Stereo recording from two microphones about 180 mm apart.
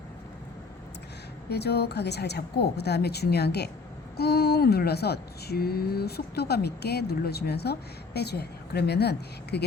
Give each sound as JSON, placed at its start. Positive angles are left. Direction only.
{"t": 1.5, "sound": "speech", "side_deg": 65}